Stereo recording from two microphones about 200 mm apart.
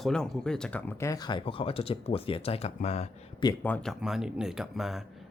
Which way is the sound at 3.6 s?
5° left (ahead or behind).